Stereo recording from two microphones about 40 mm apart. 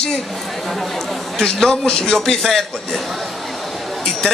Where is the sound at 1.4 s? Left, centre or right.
Centre.